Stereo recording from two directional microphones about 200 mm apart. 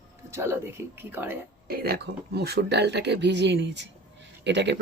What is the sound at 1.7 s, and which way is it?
Speech, 50° right (ahead or behind).